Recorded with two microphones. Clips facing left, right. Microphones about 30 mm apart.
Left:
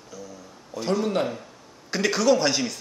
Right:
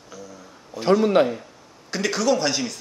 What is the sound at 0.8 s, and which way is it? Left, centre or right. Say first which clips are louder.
Speech: right 7 dB; right.